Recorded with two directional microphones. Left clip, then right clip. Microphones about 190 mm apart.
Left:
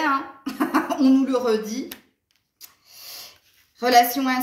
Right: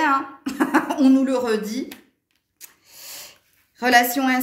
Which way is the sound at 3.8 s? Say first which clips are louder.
Even; 55° right (ahead or behind).